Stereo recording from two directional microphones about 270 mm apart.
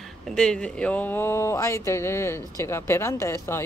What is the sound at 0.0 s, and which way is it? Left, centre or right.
Speech, centre.